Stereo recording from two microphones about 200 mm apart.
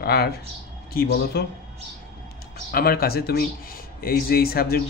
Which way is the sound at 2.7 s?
50° left (ahead or behind).